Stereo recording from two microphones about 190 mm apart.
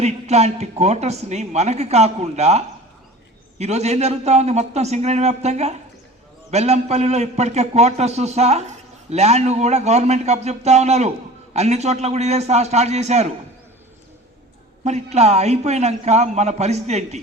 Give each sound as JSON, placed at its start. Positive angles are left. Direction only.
{"t": 0.0, "sound": "a man's voice", "side_deg": -35}
{"t": 14.8, "sound": "a man's voice", "side_deg": -35}